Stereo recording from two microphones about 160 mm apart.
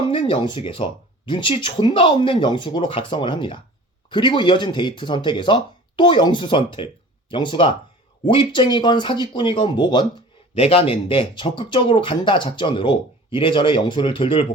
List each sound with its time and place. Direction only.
0.1 s speech: 30° left (ahead or behind)
10.5 s speech: 40° left (ahead or behind)